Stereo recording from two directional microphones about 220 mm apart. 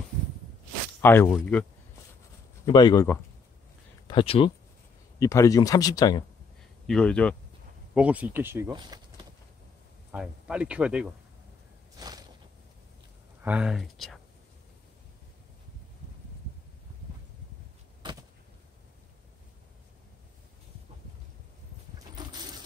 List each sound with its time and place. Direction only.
1.0 s speech: 10° left (ahead or behind)
2.6 s speech: 20° left (ahead or behind)
4.1 s speech: 25° left (ahead or behind)
6.9 s speech: 5° left (ahead or behind)
7.9 s speech: 5° right (ahead or behind)
10.1 s speech: 5° right (ahead or behind)
12.0 s a sound: 15° right (ahead or behind)
13.4 s speech: 5° right (ahead or behind)
21.9 s a sound: 20° right (ahead or behind)